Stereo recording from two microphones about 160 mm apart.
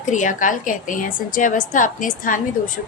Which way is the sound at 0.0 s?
50° left (ahead or behind).